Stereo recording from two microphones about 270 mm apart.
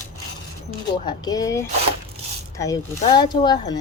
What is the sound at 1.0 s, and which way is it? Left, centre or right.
Speech, centre.